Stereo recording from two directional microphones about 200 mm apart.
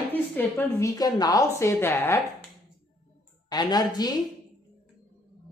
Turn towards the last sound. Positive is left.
turn(degrees=20)  # may be behind; listen again after turning